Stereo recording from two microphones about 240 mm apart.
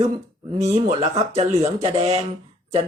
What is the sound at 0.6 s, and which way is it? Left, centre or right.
Speech, right.